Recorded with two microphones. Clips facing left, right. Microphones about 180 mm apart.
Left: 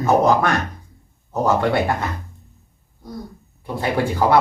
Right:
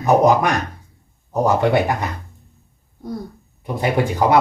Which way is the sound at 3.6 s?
20° right (ahead or behind).